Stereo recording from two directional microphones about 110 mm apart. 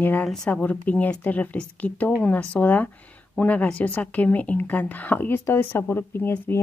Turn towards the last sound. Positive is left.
turn(degrees=20)  # may be behind; listen again after turning